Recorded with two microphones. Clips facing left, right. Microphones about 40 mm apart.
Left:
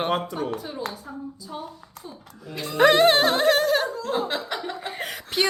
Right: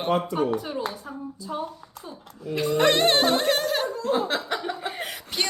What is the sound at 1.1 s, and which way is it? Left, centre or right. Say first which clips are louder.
Speech: even; right.